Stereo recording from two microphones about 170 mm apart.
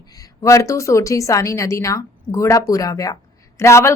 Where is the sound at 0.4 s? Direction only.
20° left (ahead or behind).